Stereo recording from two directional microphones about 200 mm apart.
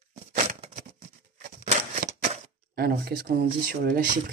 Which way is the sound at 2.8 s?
50° right (ahead or behind).